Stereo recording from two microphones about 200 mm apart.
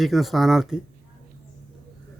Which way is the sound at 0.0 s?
Centre (ahead or behind).